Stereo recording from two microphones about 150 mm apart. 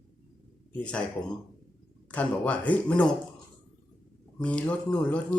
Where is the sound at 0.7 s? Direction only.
10° left (ahead or behind).